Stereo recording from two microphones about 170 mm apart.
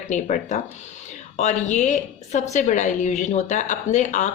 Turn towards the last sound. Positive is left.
turn(degrees=45)  # may be behind; listen again after turning